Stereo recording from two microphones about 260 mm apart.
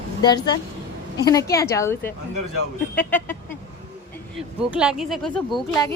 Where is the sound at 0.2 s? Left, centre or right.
Centre.